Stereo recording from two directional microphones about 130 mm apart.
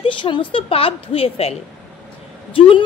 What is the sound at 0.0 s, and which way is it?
A woman's voice, 40° left (ahead or behind).